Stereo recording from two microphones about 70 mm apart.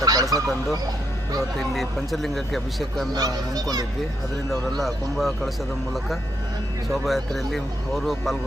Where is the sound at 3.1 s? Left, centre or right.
Right.